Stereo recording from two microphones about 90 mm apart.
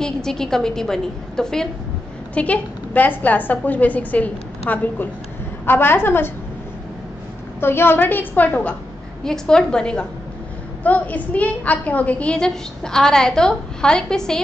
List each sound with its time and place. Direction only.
0.0 s a woman's voice: 5° left (ahead or behind); by 6.3 s 25° left (ahead or behind)
7.6 s a woman's voice: 25° left (ahead or behind); by 14.4 s 5° left (ahead or behind)